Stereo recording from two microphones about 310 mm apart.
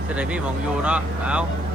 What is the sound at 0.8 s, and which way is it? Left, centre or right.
Speech, centre.